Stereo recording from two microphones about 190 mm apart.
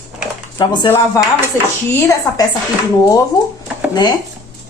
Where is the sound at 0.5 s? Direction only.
20° left (ahead or behind).